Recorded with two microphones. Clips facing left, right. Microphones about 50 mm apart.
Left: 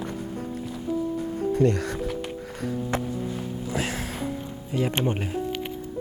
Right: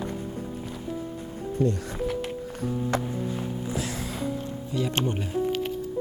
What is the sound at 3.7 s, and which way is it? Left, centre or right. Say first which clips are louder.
Music: left 2 dB; left.